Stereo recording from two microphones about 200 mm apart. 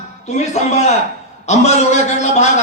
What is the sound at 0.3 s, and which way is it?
A man's voice, 35° left (ahead or behind).